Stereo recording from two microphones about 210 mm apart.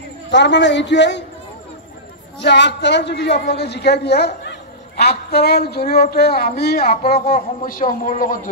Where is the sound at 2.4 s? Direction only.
55° left (ahead or behind).